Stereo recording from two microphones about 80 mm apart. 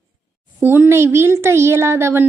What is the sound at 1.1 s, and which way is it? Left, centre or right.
Speech, right.